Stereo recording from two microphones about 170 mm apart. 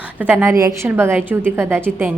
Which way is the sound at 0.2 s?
10° right (ahead or behind).